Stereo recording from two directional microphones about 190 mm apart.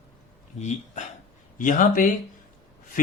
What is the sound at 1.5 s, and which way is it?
Speech, 45° left (ahead or behind).